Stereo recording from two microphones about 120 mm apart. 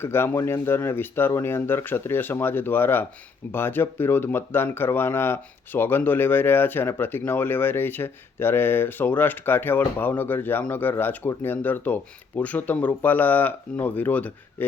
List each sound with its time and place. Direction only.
0.0 s speech: 20° left (ahead or behind)